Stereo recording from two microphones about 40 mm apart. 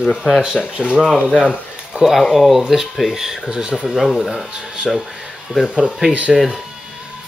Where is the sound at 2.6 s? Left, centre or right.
Centre.